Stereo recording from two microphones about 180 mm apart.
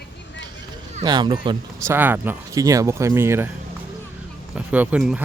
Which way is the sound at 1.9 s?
10° right (ahead or behind).